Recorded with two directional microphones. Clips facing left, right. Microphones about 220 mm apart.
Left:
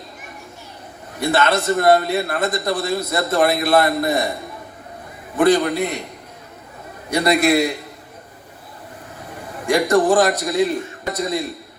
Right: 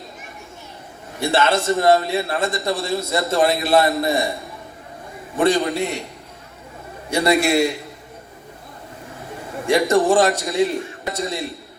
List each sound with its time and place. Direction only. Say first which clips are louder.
1.2 s a man's voice: even; 25° right (ahead or behind)
5.4 s a man's voice: left 2 dB; 25° right (ahead or behind)
7.1 s a man's voice: left 1 dB; 25° right (ahead or behind)
9.6 s a man's voice: left 1 dB; 25° right (ahead or behind)